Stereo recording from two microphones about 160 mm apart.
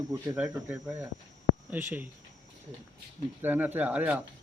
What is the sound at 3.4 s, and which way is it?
Speech, 10° right (ahead or behind).